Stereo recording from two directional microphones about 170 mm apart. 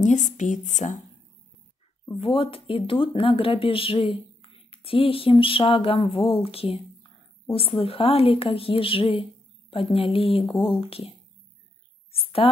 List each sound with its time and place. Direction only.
0.0 s speech: 45° left (ahead or behind)
2.1 s speech: 35° left (ahead or behind)
12.1 s a sound: 35° left (ahead or behind)